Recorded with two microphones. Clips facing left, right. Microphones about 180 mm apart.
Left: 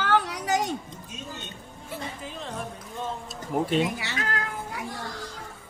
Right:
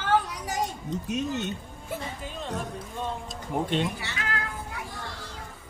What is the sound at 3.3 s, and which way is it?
Speech, 5° left (ahead or behind).